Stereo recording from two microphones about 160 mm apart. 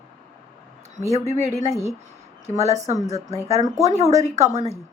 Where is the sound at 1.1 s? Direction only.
40° right (ahead or behind).